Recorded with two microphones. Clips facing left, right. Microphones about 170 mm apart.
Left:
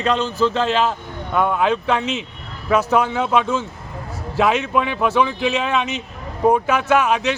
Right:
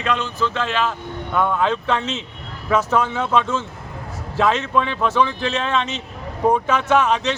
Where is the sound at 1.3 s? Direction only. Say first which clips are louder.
Left 2 dB; 10° left (ahead or behind).